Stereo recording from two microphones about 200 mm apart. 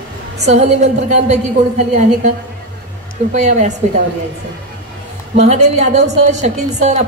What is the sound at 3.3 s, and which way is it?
Speech, 35° right (ahead or behind).